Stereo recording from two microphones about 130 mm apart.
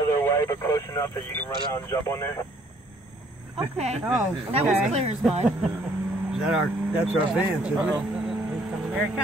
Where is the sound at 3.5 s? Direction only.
50° right (ahead or behind).